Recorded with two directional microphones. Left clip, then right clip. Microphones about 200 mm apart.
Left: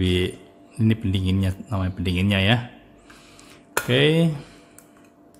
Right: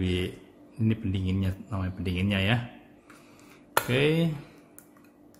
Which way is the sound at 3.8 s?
25° left (ahead or behind).